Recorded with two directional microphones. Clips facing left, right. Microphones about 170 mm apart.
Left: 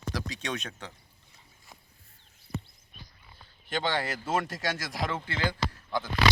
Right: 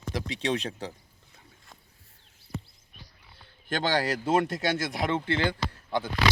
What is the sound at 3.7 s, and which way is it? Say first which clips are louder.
Speech: right 3 dB; 45° right (ahead or behind).